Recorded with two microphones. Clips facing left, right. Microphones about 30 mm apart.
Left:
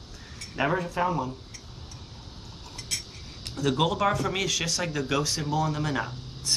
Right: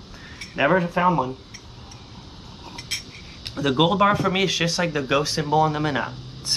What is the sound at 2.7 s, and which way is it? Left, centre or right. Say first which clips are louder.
Speech: right 4 dB; right.